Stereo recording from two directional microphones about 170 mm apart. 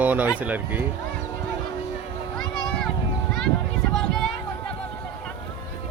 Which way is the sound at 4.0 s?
5° left (ahead or behind).